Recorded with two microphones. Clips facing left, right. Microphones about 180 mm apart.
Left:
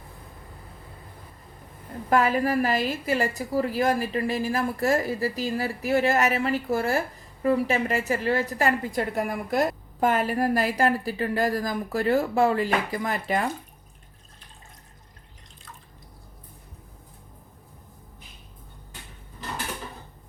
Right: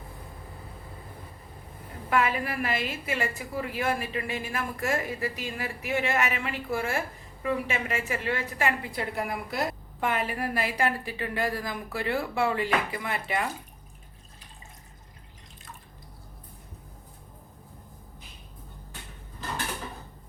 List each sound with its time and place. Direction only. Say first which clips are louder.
2.0 s a woman's voice: left 5 dB; 40° left (ahead or behind)